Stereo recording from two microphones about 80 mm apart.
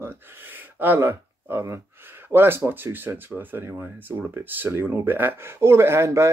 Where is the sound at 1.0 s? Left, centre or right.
Right.